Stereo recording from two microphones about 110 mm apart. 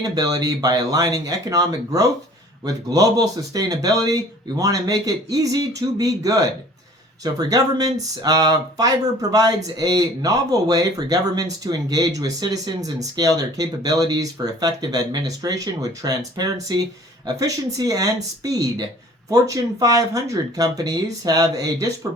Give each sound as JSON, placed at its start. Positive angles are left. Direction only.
{"t": 0.0, "sound": "speech", "side_deg": -35}